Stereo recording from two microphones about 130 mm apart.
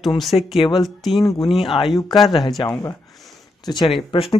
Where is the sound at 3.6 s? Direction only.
35° left (ahead or behind).